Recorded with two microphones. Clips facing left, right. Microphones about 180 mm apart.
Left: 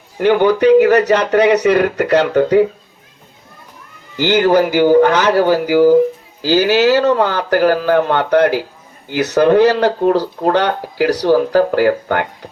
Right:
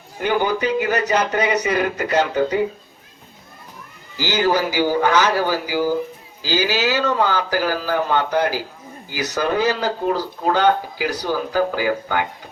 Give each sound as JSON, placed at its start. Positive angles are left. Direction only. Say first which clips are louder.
{"t": 0.2, "sound": "speech", "louder": "left 8 dB", "side_deg": 70}
{"t": 4.2, "sound": "speech", "louder": "left 7 dB", "side_deg": 55}